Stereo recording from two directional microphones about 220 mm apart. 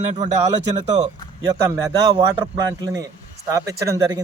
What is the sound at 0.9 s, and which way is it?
A man's voice, 20° right (ahead or behind).